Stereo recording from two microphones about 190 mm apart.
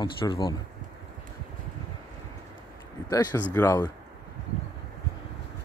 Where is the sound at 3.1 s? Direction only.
20° left (ahead or behind).